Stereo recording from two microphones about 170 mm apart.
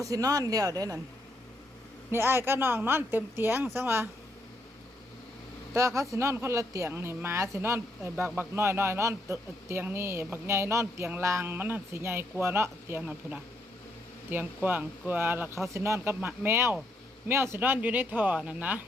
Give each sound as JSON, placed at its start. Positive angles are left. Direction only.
{"t": 0.0, "sound": "speech", "side_deg": -20}
{"t": 2.0, "sound": "speech", "side_deg": -15}
{"t": 5.7, "sound": "speech", "side_deg": -20}